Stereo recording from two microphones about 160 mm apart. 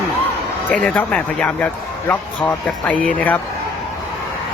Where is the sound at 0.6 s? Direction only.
10° left (ahead or behind).